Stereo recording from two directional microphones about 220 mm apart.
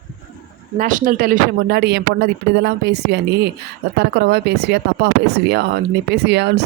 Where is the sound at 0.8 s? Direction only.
35° right (ahead or behind).